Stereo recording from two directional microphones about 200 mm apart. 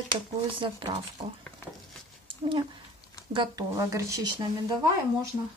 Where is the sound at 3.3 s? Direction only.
20° right (ahead or behind).